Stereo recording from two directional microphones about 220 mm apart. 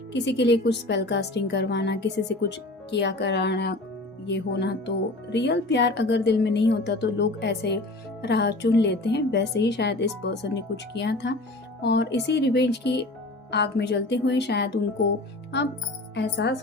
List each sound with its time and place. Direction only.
0.1 s a woman's voice: 50° left (ahead or behind)
16.1 s a woman's voice: 50° left (ahead or behind)